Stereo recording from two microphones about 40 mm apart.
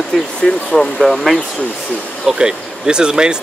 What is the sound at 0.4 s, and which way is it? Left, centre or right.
Speech, left.